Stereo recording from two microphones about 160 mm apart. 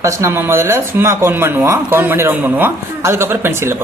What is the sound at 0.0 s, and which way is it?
Speech, 20° right (ahead or behind).